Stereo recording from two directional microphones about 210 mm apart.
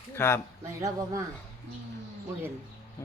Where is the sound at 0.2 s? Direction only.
10° left (ahead or behind).